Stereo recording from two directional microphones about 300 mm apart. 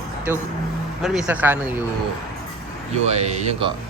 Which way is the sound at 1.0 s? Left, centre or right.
Centre.